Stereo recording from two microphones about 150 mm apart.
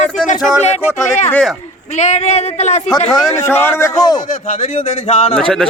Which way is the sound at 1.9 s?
45° left (ahead or behind).